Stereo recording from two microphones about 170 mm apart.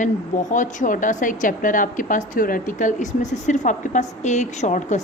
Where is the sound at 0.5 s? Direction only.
50° left (ahead or behind).